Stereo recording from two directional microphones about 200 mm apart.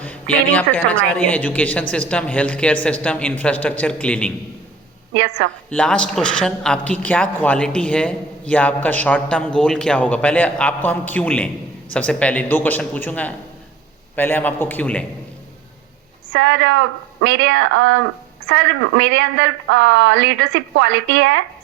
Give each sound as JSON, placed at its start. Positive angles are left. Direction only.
{"t": 0.0, "sound": "speech", "side_deg": 5}
{"t": 5.1, "sound": "speech", "side_deg": -70}
{"t": 5.7, "sound": "speech", "side_deg": 5}
{"t": 16.3, "sound": "speech", "side_deg": -65}